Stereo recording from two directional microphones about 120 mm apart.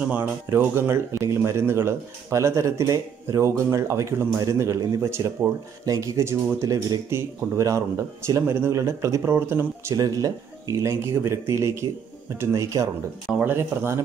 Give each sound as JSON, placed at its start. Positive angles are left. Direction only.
{"t": 0.1, "sound": "speech", "side_deg": -15}